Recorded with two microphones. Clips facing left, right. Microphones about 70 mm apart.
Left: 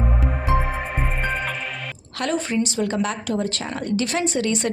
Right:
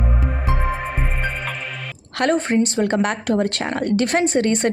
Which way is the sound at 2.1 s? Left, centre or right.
Right.